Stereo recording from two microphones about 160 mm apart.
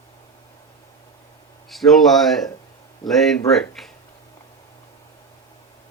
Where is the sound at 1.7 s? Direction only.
Centre (ahead or behind).